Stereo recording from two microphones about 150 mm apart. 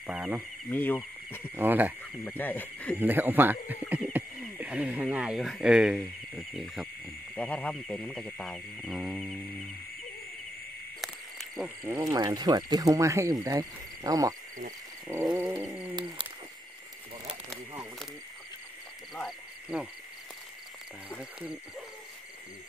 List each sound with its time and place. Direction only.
0.0 s speech: 10° right (ahead or behind)
0.7 s speech: 10° left (ahead or behind)
1.6 s speech: 10° right (ahead or behind)
2.2 s speech: 10° left (ahead or behind)
3.0 s speech: 15° right (ahead or behind)
7.3 s speech: 10° left (ahead or behind)
11.0 s frog: centre (ahead or behind)
11.8 s speech: 25° right (ahead or behind)
15.3 s a sound: 15° right (ahead or behind)
19.1 s frog: 5° right (ahead or behind)
21.2 s frog: 5° right (ahead or behind)